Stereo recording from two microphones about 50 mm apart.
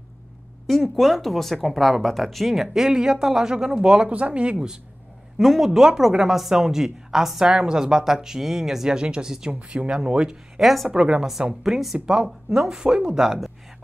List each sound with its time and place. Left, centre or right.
0.7 s speech: centre
5.4 s a woman's voice: centre
10.6 s speech: centre
10.9 s a woman's voice: centre
11.6 s a woman's voice: centre